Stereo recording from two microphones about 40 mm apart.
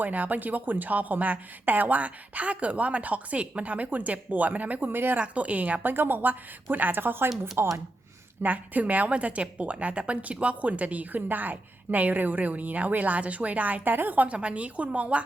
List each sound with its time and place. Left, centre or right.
0.0 s a woman's voice: right
4.9 s a woman's voice: right
5.2 s a woman's voice: right
5.8 s a woman's voice: right
7.6 s speech: right
8.4 s a woman's voice: right
13.9 s a woman's voice: right
14.3 s a woman's voice: right